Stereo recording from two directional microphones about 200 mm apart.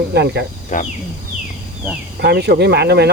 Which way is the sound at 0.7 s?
40° left (ahead or behind).